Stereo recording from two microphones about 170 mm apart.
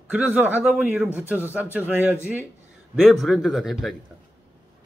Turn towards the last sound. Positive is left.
turn(degrees=0)  # may be behind; listen again after turning